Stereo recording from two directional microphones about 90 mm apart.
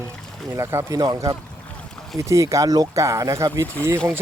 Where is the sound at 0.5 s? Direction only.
35° right (ahead or behind).